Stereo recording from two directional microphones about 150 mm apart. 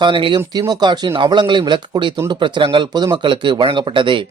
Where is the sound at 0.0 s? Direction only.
35° right (ahead or behind).